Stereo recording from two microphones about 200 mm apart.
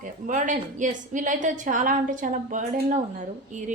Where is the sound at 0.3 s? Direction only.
40° right (ahead or behind).